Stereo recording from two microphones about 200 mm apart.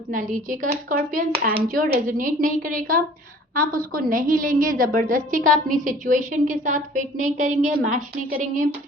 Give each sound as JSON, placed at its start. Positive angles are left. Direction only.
{"t": 0.1, "sound": "a woman's voice", "side_deg": -40}